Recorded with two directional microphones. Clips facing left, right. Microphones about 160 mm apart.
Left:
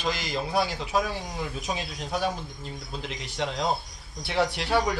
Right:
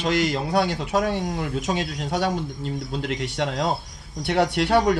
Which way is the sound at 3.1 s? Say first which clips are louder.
Right 4 dB; 65° right (ahead or behind).